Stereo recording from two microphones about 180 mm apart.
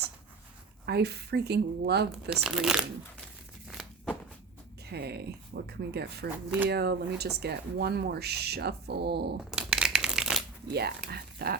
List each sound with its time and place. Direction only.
0.9 s speech: 65° right (ahead or behind)
2.3 s speech: 5° right (ahead or behind)
3.7 s a sound: 5° right (ahead or behind)
4.9 s speech: 65° right (ahead or behind)
9.4 s a sound: 5° right (ahead or behind)
10.7 s speech: 65° right (ahead or behind)